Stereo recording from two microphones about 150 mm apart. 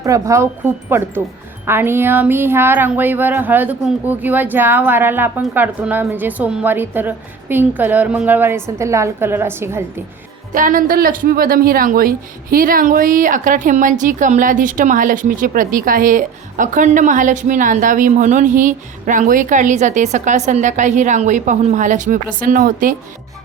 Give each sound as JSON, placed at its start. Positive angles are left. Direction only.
{"t": 0.0, "sound": "speech", "side_deg": -20}
{"t": 10.5, "sound": "a woman's voice", "side_deg": -65}